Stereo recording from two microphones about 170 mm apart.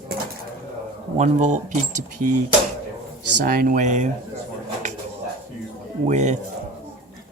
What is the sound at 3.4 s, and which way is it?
Speech, 55° right (ahead or behind).